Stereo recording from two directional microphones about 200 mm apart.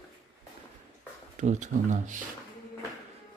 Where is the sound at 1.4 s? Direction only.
35° right (ahead or behind).